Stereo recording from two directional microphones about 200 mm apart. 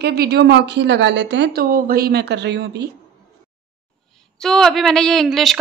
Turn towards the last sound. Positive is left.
turn(degrees=0)  # may be behind; listen again after turning